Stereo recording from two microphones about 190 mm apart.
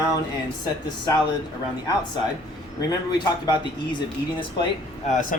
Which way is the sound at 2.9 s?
20° left (ahead or behind).